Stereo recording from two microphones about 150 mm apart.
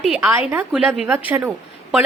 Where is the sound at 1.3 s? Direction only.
15° right (ahead or behind).